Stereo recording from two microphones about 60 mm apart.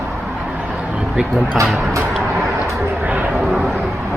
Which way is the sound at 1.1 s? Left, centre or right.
Centre.